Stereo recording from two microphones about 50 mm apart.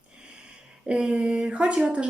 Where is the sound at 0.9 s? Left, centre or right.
Right.